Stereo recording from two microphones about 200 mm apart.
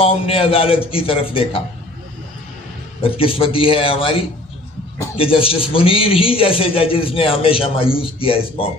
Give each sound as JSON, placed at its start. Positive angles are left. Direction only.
{"t": 0.0, "sound": "a man's voice", "side_deg": 30}
{"t": 3.0, "sound": "a man's voice", "side_deg": 25}